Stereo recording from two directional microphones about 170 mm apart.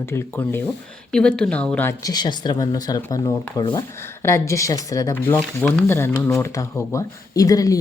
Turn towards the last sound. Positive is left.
turn(degrees=20)  # may be behind; listen again after turning